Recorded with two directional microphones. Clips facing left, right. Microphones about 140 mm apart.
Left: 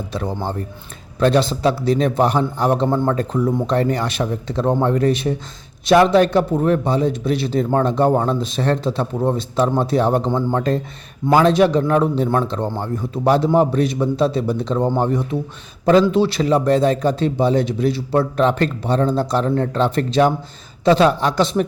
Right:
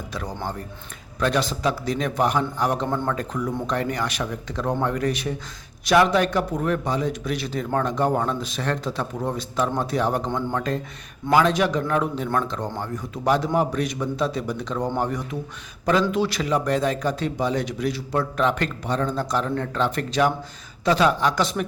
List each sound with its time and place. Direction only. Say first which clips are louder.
0.1 s a man's voice: left 6 dB; 30° left (ahead or behind)